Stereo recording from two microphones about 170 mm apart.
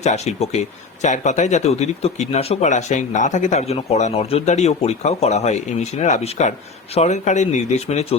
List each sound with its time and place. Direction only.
0.0 s speech: 40° left (ahead or behind)